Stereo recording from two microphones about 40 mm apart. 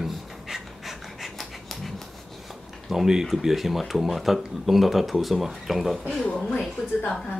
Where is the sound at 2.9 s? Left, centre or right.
Centre.